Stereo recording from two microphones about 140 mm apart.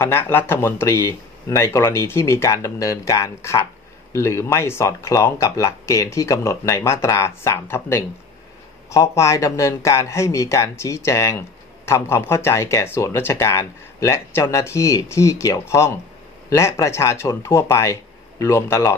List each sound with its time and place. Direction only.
0.0 s speech: 15° left (ahead or behind)